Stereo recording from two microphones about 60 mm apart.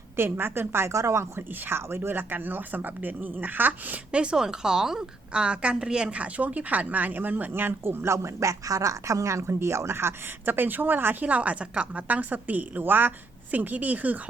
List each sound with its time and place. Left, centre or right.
0.2 s speech: right
1.4 s speech: right
8.1 s speech: right